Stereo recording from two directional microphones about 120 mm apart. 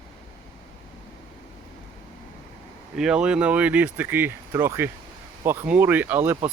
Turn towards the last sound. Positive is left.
turn(degrees=-20)  # may be behind; listen again after turning